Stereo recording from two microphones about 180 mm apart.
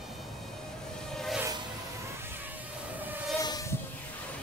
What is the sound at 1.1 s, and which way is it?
Music, centre (ahead or behind).